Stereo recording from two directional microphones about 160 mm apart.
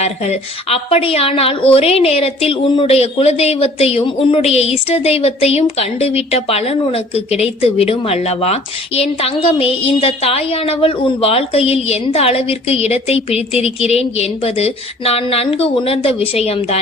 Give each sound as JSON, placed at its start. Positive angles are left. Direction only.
{"t": 0.0, "sound": "a woman's voice", "side_deg": 45}